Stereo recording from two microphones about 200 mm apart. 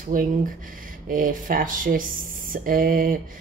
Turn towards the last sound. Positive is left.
turn(degrees=-45)  # may be behind; listen again after turning